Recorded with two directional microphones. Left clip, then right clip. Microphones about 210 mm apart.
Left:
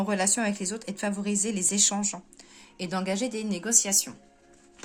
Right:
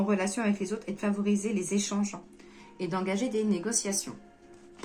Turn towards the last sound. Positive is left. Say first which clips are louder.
# left 4 dB
turn(degrees=50)  # may be behind; listen again after turning